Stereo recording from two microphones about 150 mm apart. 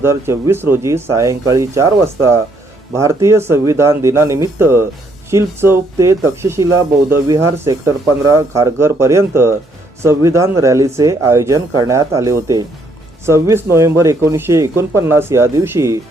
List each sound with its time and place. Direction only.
0.0 s speech: 20° right (ahead or behind)